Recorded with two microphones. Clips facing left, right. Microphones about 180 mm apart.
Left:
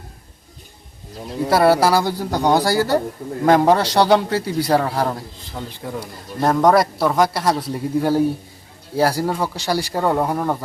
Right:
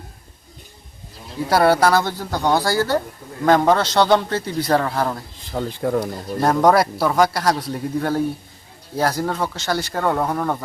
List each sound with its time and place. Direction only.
1.5 s a man's voice: centre (ahead or behind)
5.5 s speech: 50° right (ahead or behind)
6.4 s a man's voice: centre (ahead or behind)